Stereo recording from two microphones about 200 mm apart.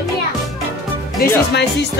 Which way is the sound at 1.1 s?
55° left (ahead or behind).